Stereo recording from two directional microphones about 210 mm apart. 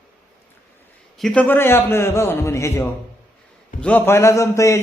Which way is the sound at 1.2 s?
5° left (ahead or behind).